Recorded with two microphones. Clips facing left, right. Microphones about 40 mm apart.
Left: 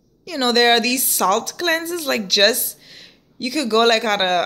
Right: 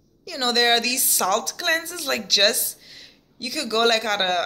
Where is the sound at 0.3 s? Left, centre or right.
Left.